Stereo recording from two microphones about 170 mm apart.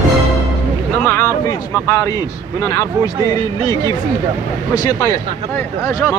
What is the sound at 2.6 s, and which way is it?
A man's voice, 20° left (ahead or behind).